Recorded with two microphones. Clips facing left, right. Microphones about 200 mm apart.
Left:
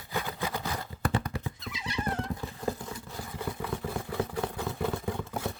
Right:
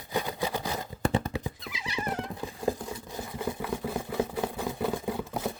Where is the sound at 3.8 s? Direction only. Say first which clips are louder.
Right 3 dB; 15° right (ahead or behind).